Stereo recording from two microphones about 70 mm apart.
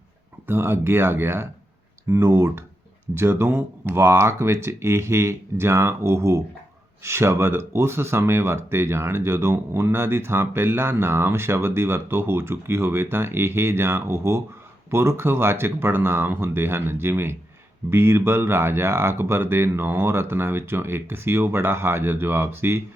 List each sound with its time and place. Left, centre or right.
0.4 s speech: right